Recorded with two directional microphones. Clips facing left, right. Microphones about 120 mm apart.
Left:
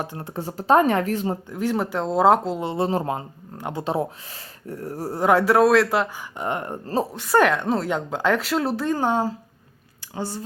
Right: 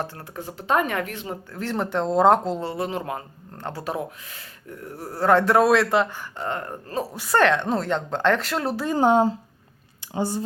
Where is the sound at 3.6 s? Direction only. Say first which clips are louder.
Left 4 dB; 20° left (ahead or behind).